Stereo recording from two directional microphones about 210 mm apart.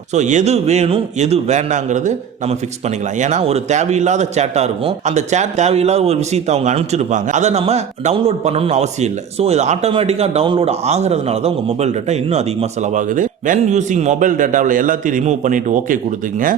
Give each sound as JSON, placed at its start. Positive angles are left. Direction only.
{"t": 0.1, "sound": "a man's voice", "side_deg": -35}